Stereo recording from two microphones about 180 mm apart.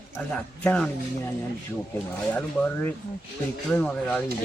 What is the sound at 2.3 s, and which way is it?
Speech, 10° left (ahead or behind).